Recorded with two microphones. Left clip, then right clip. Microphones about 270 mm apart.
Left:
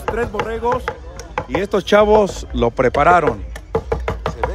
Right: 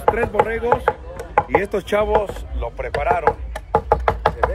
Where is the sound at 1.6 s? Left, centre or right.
Left.